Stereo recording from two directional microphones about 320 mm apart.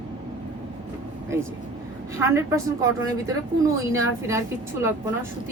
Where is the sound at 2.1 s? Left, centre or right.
Centre.